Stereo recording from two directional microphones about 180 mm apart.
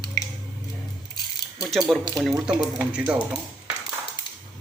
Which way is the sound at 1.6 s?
Centre (ahead or behind).